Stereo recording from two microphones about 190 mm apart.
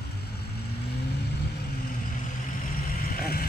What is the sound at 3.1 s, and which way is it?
Vehicle, 50° left (ahead or behind).